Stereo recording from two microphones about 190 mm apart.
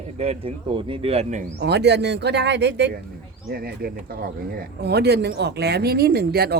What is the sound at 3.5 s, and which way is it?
Speech, 55° right (ahead or behind).